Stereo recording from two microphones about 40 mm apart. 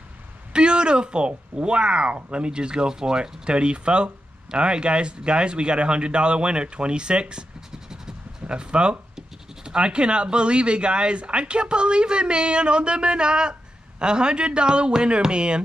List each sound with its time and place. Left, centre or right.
0.5 s speech: right